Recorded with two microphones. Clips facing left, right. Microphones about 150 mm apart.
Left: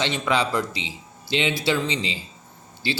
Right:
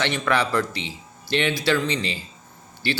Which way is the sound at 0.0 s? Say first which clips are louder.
Even; 20° left (ahead or behind).